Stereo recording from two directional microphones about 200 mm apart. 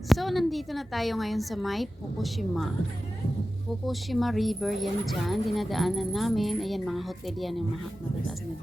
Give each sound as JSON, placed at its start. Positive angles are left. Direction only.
{"t": 0.1, "sound": "speech", "side_deg": 0}
{"t": 3.8, "sound": "speech", "side_deg": 0}